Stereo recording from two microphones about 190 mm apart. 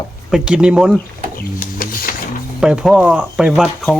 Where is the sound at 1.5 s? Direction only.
50° left (ahead or behind).